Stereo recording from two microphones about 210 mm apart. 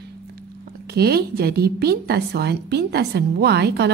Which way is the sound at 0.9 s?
50° right (ahead or behind).